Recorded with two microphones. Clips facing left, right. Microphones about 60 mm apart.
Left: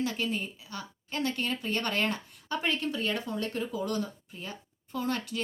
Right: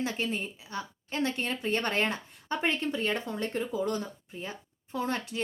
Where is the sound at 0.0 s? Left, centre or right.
Right.